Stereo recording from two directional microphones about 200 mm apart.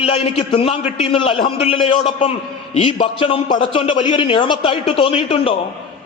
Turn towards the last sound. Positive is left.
turn(degrees=25)  # may be behind; listen again after turning